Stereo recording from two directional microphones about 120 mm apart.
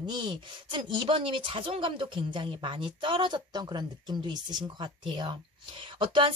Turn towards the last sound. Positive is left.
turn(degrees=-45)  # may be behind; listen again after turning